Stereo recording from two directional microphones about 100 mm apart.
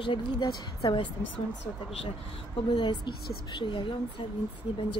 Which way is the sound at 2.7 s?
50° left (ahead or behind).